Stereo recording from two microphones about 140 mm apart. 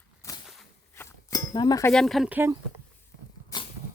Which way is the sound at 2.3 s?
15° right (ahead or behind).